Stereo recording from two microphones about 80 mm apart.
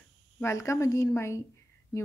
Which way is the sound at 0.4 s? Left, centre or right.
Left.